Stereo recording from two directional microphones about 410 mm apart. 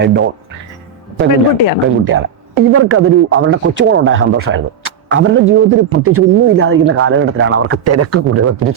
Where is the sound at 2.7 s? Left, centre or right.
Right.